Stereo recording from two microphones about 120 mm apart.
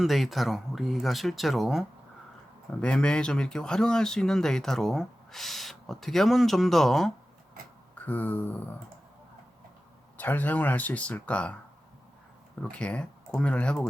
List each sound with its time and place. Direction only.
0.0 s speech: centre (ahead or behind)
2.8 s speech: 10° left (ahead or behind)
8.0 s speech: 15° left (ahead or behind)
10.2 s speech: 15° left (ahead or behind)
12.7 s speech: 10° left (ahead or behind)